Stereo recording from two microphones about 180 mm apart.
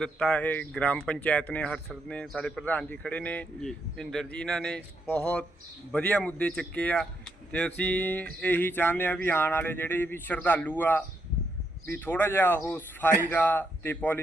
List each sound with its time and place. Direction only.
0.0 s speech: 5° left (ahead or behind)